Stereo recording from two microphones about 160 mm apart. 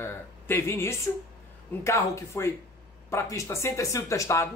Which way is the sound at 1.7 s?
15° left (ahead or behind).